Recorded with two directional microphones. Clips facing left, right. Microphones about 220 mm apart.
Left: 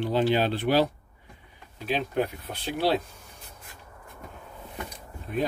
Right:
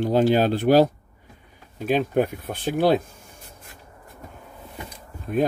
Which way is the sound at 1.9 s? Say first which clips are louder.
Right 6 dB; 50° right (ahead or behind).